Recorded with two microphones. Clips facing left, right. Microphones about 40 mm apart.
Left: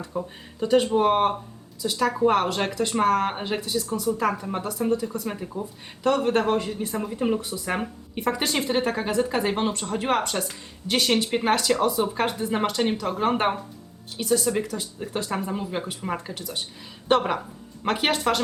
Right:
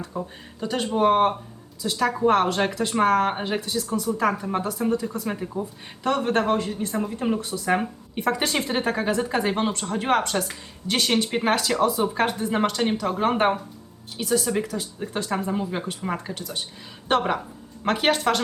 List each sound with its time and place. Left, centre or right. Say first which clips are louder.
0.0 s speech: left 1 dB; centre
4.3 s speech: right 2 dB; centre